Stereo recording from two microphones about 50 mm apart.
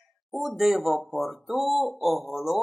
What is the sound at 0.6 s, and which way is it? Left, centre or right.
Speech, centre.